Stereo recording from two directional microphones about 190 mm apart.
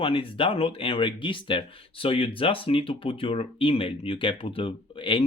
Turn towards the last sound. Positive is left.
turn(degrees=25)  # may be behind; listen again after turning